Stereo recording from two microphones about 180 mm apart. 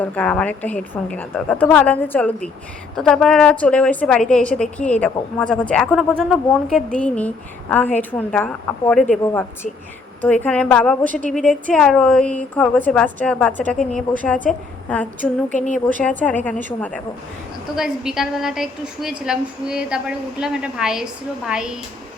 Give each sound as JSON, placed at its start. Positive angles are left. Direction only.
{"t": 0.0, "sound": "a woman's voice", "side_deg": 10}
{"t": 15.5, "sound": "a woman's voice", "side_deg": 45}
{"t": 16.2, "sound": "a woman's voice", "side_deg": 10}
{"t": 17.7, "sound": "a woman's voice", "side_deg": -5}